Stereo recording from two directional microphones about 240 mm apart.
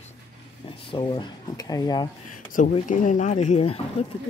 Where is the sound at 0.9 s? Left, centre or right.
Centre.